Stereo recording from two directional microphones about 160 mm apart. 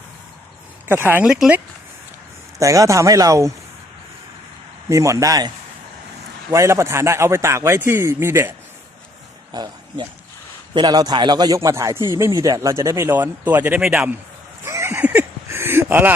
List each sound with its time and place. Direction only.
0.9 s a man's voice: 10° right (ahead or behind)
2.6 s speech: 20° right (ahead or behind)
4.9 s speech: 20° right (ahead or behind)
6.5 s a man's voice: 20° right (ahead or behind)
14.6 s a sound: 15° right (ahead or behind)